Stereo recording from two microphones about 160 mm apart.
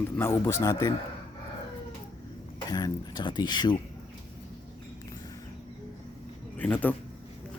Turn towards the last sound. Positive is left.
turn(degrees=10)  # may be behind; listen again after turning